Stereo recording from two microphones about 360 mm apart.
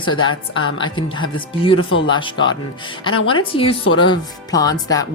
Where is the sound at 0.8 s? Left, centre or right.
Centre.